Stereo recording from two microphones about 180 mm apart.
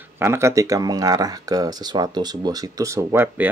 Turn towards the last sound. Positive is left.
turn(degrees=-15)  # may be behind; listen again after turning